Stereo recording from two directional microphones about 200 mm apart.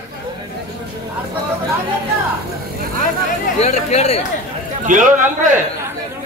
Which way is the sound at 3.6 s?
35° left (ahead or behind).